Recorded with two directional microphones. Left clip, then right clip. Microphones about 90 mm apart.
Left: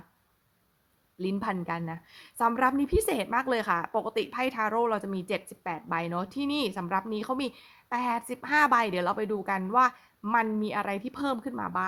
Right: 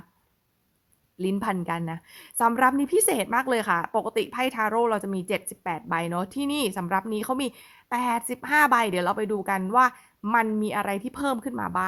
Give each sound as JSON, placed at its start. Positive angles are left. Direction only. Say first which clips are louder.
{"t": 1.2, "sound": "a woman's voice", "louder": "right 4 dB", "side_deg": -35}